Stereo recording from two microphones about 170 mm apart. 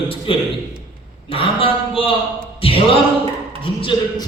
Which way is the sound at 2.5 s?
35° left (ahead or behind).